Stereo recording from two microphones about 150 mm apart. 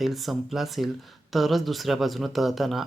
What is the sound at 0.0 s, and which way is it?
Speech, centre (ahead or behind).